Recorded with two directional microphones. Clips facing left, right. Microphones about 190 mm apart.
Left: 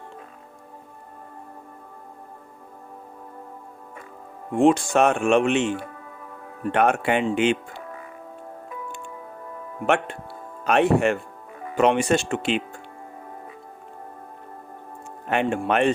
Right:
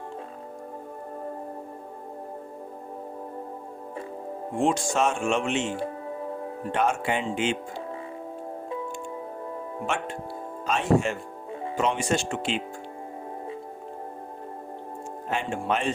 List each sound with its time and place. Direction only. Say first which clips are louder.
4.5 s speech: left 7 dB; 60° left (ahead or behind)
5.8 s music: right 8 dB; 30° right (ahead or behind)
6.7 s speech: left 5 dB; 60° left (ahead or behind)
9.8 s speech: left 9 dB; 65° left (ahead or behind)
15.3 s speech: left 5 dB; 60° left (ahead or behind)